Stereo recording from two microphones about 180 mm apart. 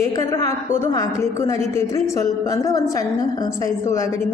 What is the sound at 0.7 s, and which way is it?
A woman's voice, 15° left (ahead or behind).